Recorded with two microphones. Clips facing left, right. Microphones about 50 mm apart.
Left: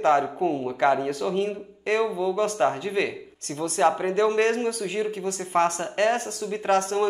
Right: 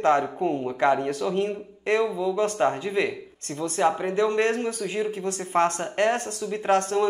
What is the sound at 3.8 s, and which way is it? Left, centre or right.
Speech, centre.